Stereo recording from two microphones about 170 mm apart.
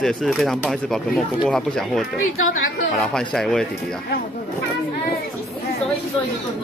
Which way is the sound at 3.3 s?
Centre (ahead or behind).